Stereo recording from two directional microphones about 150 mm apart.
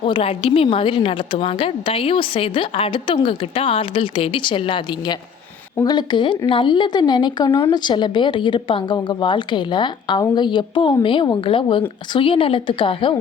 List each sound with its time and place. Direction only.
0.0 s a woman's voice: 35° left (ahead or behind)